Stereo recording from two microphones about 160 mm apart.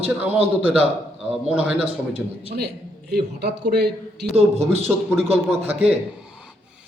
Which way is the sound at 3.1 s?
90° right.